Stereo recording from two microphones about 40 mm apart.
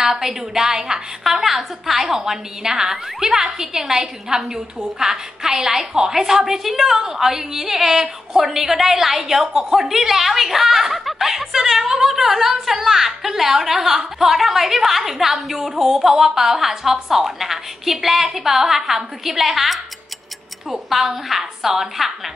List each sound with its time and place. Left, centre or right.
0.0 s a woman's voice: centre
20.9 s a woman's voice: centre